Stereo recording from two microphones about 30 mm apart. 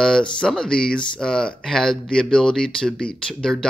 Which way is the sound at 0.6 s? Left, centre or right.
Left.